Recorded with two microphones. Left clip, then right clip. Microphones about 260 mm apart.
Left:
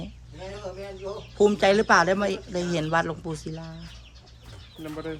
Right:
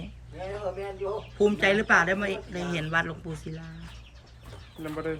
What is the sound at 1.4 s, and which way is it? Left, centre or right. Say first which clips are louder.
Speech: left 4 dB; centre.